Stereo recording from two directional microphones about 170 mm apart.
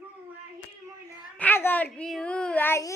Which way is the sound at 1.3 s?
10° left (ahead or behind).